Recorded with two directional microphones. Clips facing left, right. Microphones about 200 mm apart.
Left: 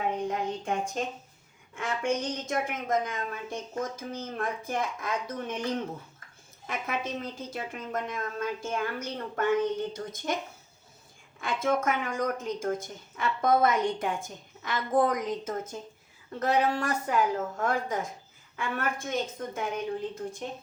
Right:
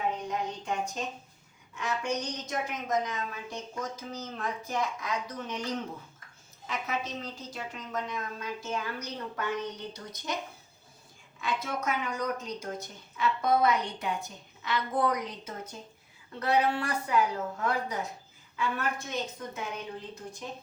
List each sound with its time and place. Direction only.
0.3 s a sound: 50° left (ahead or behind)
1.7 s a woman's voice: 50° left (ahead or behind)
6.7 s a woman's voice: 55° left (ahead or behind)
11.3 s a woman's voice: 50° left (ahead or behind)